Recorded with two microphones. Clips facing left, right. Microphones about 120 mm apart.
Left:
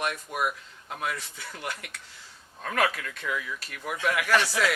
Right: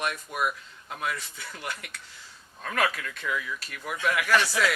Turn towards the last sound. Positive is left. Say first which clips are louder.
# even
turn(degrees=45)  # may be behind; listen again after turning